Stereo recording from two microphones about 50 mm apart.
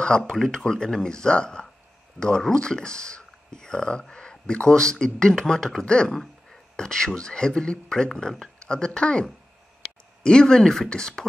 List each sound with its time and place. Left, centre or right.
0.0 s speech: centre